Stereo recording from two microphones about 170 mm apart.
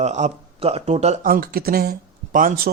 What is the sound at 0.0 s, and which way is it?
Speech, 40° right (ahead or behind).